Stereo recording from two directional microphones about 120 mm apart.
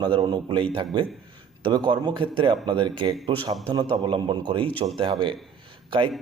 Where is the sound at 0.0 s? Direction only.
40° right (ahead or behind).